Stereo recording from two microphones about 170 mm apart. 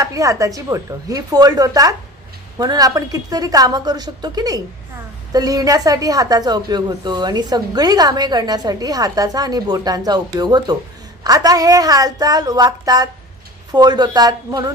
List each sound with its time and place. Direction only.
0.0 s a woman's voice: 20° right (ahead or behind)